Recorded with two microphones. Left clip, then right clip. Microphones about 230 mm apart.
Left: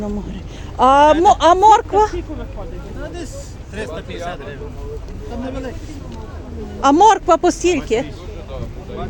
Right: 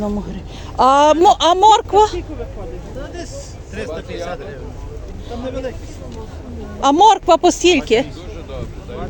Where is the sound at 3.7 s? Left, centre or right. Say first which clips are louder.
Right 1 dB; left.